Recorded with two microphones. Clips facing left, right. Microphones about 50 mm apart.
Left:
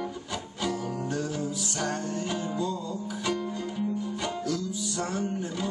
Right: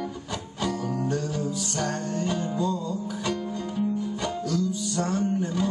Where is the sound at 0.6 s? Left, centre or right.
Centre.